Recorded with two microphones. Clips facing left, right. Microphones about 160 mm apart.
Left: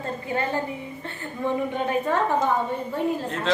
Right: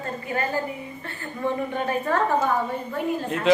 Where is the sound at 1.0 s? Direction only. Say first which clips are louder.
Right 1 dB; 15° left (ahead or behind).